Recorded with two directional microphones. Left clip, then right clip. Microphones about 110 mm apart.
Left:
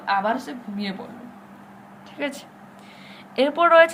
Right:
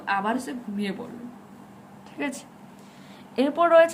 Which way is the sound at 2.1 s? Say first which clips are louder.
Left 3 dB; 35° right (ahead or behind).